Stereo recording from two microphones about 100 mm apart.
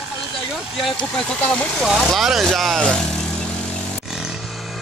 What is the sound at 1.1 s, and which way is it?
Speech, 10° left (ahead or behind).